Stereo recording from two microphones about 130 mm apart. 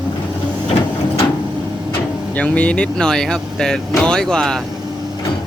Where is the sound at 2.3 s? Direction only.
10° left (ahead or behind).